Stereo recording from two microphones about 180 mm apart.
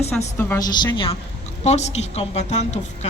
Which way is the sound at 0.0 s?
40° left (ahead or behind).